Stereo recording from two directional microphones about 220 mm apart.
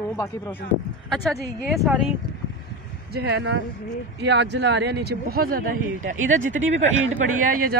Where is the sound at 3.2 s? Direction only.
50° right (ahead or behind).